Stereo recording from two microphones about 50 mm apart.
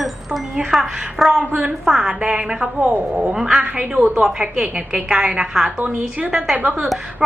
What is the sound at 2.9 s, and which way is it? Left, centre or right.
Speech, right.